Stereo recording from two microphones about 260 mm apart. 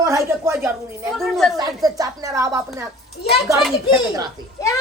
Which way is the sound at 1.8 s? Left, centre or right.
Centre.